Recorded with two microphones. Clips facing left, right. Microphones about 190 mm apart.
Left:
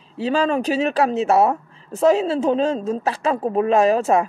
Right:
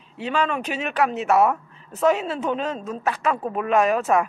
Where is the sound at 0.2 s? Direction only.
35° left (ahead or behind).